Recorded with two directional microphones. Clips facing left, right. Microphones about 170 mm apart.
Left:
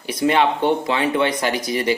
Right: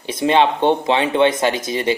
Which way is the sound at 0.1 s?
25° right (ahead or behind).